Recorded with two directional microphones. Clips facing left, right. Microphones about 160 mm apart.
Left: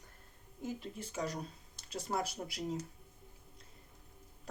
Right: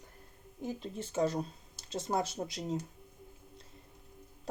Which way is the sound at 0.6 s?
25° right (ahead or behind).